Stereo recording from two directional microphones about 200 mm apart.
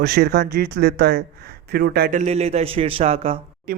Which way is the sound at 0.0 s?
50° right (ahead or behind).